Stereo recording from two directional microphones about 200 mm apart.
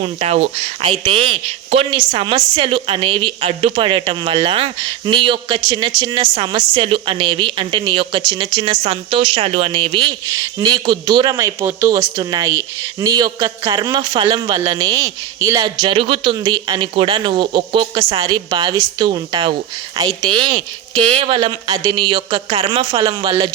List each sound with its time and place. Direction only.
0.0 s speech: 30° right (ahead or behind)